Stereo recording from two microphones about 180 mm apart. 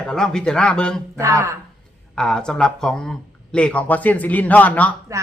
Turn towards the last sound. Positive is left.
turn(degrees=10)  # may be behind; listen again after turning